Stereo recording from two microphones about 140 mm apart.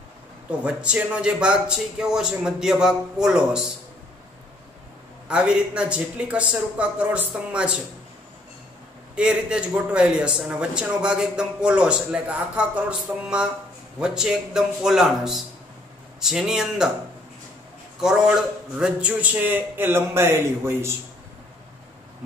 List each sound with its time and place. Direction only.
0.5 s a man's voice: 10° right (ahead or behind)
5.3 s speech: 5° right (ahead or behind)
9.1 s speech: 5° right (ahead or behind)
13.9 s a man's voice: 5° right (ahead or behind)
18.0 s speech: 5° right (ahead or behind)